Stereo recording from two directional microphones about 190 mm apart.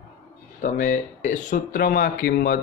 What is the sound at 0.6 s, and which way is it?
Speech, 45° left (ahead or behind).